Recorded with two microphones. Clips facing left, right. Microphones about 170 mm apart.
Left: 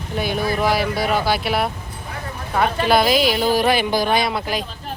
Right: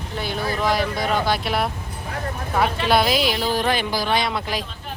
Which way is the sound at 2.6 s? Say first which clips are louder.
Left 3 dB; 45° left (ahead or behind).